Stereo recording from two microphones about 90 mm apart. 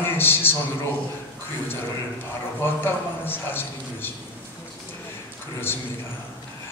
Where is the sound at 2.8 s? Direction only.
25° left (ahead or behind).